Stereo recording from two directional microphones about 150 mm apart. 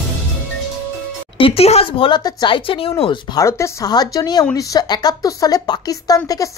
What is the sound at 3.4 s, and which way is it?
Speech, 20° left (ahead or behind).